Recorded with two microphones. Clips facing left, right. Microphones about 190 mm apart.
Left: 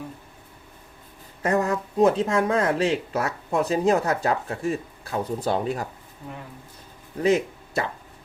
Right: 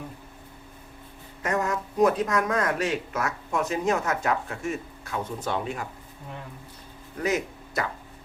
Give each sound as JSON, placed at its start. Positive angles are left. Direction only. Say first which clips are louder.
{"t": 1.4, "sound": "speech", "louder": "left 4 dB", "side_deg": 30}
{"t": 7.2, "sound": "speech", "louder": "left 6 dB", "side_deg": 30}